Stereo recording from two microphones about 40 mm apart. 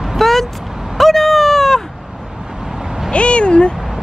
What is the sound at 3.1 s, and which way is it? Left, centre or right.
Speech, left.